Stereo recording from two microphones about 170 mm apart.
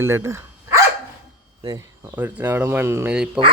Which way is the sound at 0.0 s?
15° right (ahead or behind).